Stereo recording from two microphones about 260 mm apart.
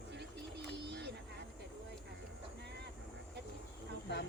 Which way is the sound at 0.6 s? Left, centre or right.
Right.